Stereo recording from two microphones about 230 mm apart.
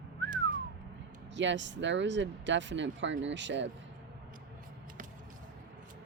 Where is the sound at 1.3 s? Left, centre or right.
Right.